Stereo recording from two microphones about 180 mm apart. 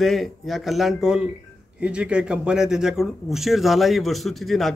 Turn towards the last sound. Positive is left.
turn(degrees=0)  # may be behind; listen again after turning